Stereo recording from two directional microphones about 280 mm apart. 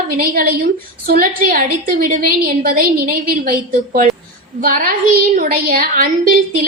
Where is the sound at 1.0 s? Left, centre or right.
Right.